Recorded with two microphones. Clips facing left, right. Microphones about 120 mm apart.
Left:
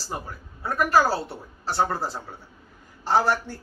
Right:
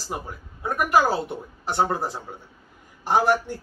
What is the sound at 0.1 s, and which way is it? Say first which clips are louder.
A man's voice: right 2 dB; 15° right (ahead or behind).